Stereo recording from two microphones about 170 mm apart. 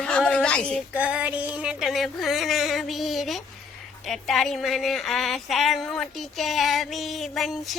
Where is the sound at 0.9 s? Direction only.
5° right (ahead or behind).